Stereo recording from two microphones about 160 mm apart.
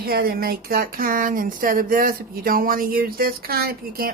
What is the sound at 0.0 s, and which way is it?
A woman's voice, 75° right (ahead or behind).